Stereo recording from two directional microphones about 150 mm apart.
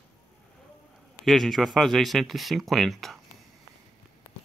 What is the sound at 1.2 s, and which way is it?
Speech, centre (ahead or behind).